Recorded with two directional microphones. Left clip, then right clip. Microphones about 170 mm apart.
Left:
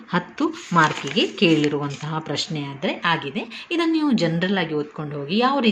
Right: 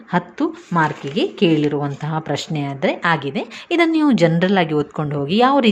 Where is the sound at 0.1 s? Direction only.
25° right (ahead or behind).